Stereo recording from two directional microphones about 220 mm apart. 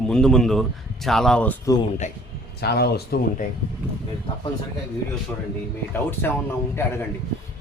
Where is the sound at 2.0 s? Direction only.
35° left (ahead or behind).